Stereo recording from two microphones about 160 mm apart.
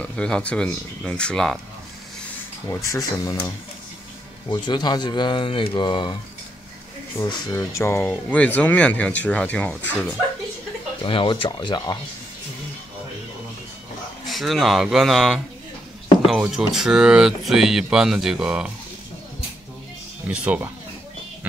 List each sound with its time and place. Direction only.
0.0 s speech: 5° left (ahead or behind)
2.7 s speech: 20° left (ahead or behind)
7.2 s speech: 25° left (ahead or behind); by 9.8 s 10° left (ahead or behind)
11.1 s speech: 30° left (ahead or behind)
14.2 s speech: centre (ahead or behind)
20.2 s speech: 10° right (ahead or behind)